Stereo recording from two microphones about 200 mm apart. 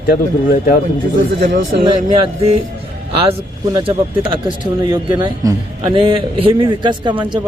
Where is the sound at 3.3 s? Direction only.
25° right (ahead or behind).